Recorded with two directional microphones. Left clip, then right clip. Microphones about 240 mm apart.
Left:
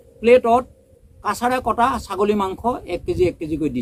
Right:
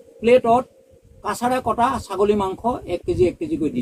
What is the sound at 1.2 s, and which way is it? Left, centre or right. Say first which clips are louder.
Speech: left 1 dB; centre.